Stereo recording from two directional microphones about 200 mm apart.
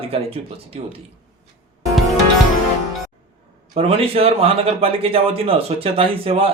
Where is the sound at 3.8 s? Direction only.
30° right (ahead or behind).